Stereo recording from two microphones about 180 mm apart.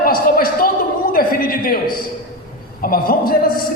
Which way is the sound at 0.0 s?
55° left (ahead or behind).